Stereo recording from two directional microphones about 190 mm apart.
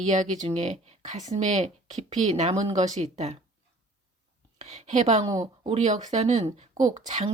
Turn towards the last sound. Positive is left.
turn(degrees=-40)  # may be behind; listen again after turning